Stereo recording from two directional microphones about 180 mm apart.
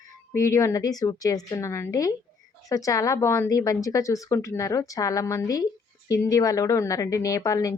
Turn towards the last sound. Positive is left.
turn(degrees=20)  # may be behind; listen again after turning